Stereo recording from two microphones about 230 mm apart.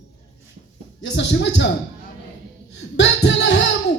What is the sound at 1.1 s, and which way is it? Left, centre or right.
Speech, left.